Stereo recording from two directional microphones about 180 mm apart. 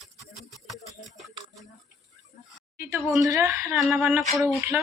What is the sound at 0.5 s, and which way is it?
Music, centre (ahead or behind).